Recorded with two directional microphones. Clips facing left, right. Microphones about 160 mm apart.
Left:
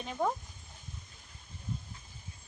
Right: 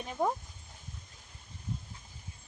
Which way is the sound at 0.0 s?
10° right (ahead or behind).